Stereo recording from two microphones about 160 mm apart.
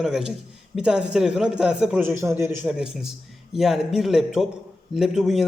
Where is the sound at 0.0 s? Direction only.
5° right (ahead or behind).